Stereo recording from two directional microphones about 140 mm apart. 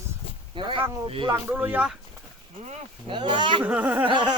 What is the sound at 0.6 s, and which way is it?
Speech, 40° right (ahead or behind).